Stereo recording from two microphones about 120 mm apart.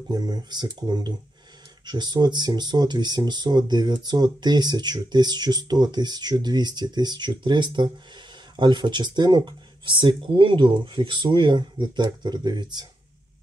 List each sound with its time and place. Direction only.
0.1 s speech: 35° right (ahead or behind)